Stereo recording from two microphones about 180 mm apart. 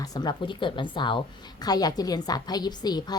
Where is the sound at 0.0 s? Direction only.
20° left (ahead or behind).